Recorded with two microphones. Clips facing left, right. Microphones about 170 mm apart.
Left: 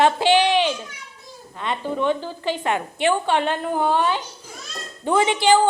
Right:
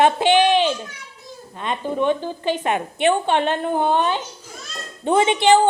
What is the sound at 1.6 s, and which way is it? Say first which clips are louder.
A woman's voice: right 2 dB; 20° right (ahead or behind).